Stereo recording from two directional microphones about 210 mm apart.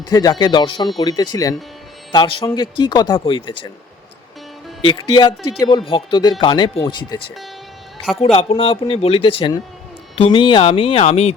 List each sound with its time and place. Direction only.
0.1 s speech: 20° left (ahead or behind)
4.8 s speech: 20° left (ahead or behind)